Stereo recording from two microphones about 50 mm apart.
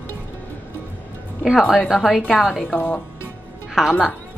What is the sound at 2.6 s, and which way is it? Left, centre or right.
Speech, left.